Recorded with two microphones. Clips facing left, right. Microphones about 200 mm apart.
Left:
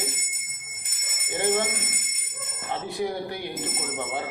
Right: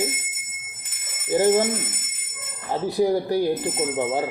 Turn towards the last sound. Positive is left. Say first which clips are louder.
# right 9 dB
turn(degrees=-35)  # may be behind; listen again after turning